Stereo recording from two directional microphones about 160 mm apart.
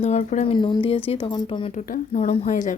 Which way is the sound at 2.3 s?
45° left (ahead or behind).